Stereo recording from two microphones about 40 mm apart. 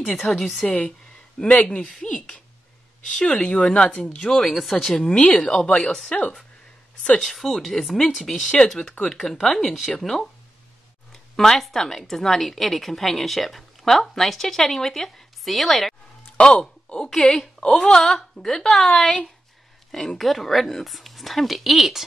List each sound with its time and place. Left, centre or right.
0.0 s speech: centre
0.7 s speech: left
3.4 s speech: left; by 4.6 s centre
4.6 s a woman's voice: centre
4.9 s speech: centre
5.8 s a woman's voice: centre
7.2 s a woman's voice: centre
11.3 s a woman's voice: centre
16.3 s speech: left
20.2 s a woman's voice: centre